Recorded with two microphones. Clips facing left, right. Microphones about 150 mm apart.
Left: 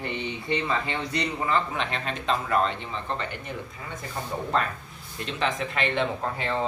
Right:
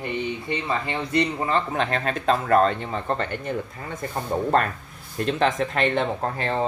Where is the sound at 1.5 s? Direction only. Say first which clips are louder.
Right 3 dB; 45° right (ahead or behind).